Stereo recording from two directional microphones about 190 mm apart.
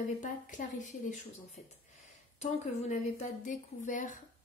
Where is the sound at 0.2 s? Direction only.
40° left (ahead or behind).